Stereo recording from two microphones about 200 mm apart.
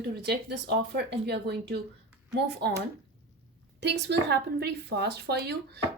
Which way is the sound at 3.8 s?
60° right (ahead or behind).